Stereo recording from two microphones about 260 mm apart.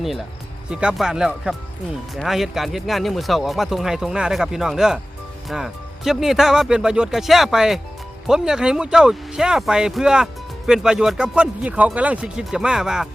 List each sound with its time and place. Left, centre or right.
0.7 s speech: centre